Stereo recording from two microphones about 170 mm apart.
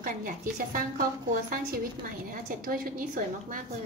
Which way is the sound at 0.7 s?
55° right (ahead or behind).